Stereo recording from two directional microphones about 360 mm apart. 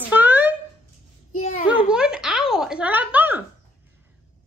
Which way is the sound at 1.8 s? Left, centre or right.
Centre.